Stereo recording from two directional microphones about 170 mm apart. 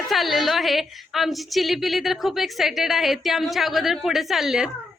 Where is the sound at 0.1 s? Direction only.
Centre (ahead or behind).